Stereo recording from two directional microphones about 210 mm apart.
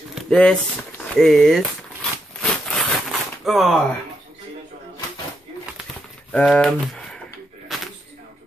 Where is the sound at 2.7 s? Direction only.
Centre (ahead or behind).